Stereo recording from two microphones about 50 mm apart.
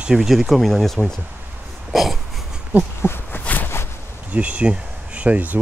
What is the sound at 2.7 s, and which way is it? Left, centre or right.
Speech, right.